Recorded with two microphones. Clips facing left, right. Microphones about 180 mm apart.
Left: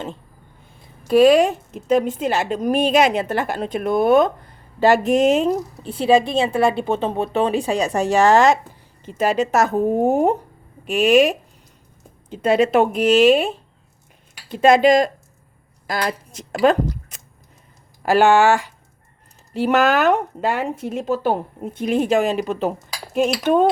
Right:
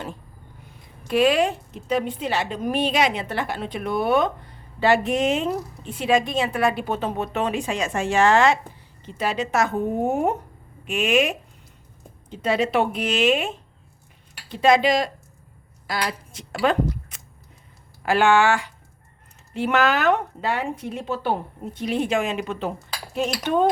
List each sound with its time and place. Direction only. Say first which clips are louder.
1.0 s a woman's voice: left 6 dB; 40° left (ahead or behind)
12.3 s a woman's voice: left 6 dB; 50° left (ahead or behind); by 13.6 s 35° left (ahead or behind)
14.5 s a woman's voice: left 5 dB; 50° left (ahead or behind)